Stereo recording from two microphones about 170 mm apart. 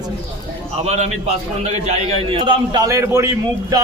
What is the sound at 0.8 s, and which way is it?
A man's voice, 40° right (ahead or behind).